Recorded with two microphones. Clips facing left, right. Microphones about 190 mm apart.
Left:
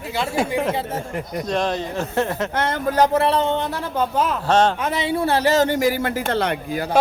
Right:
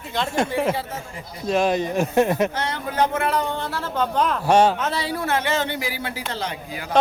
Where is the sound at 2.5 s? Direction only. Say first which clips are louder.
Left 5 dB; 50° left (ahead or behind); by 3.8 s 20° left (ahead or behind).